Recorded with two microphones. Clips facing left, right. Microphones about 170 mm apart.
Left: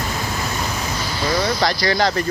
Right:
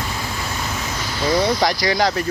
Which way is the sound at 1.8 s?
10° right (ahead or behind).